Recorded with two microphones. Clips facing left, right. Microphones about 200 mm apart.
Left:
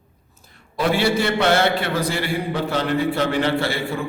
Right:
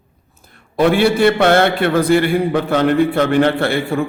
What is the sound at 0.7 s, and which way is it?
A man's voice, 55° right (ahead or behind).